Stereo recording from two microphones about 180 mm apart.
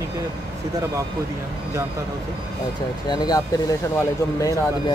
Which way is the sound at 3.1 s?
20° left (ahead or behind).